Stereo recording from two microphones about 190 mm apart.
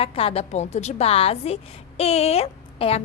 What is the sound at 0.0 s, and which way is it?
A woman's voice, 30° left (ahead or behind).